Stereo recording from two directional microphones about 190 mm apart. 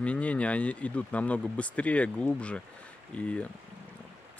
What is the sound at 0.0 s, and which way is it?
Speech, 5° left (ahead or behind).